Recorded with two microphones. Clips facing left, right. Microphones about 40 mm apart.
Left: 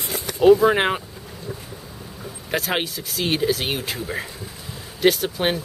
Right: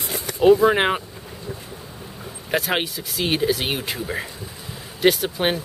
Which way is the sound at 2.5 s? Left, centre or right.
Centre.